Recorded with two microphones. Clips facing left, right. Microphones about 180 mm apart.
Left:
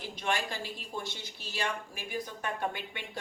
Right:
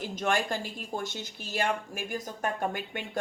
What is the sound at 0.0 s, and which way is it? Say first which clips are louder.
Speech: right 5 dB; 45° right (ahead or behind).